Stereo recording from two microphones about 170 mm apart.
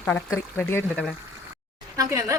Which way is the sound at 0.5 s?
10° left (ahead or behind).